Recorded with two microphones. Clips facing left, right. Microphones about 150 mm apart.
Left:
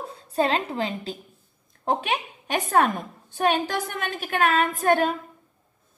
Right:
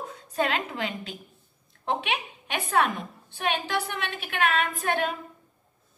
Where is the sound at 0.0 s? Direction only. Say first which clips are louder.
Left 4 dB; 30° left (ahead or behind).